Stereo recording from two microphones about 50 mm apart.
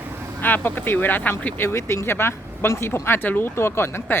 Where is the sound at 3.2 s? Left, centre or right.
Left.